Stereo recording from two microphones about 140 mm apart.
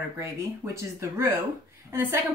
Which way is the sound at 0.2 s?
20° right (ahead or behind).